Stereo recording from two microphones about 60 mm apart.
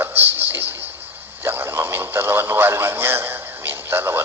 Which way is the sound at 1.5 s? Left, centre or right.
Right.